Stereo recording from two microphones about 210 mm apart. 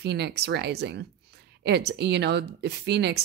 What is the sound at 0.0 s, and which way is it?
Speech, 55° right (ahead or behind).